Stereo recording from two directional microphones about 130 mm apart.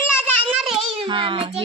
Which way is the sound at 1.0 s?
40° right (ahead or behind).